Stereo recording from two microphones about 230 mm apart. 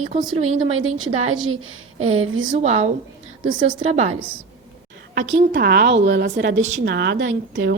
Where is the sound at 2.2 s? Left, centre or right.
Right.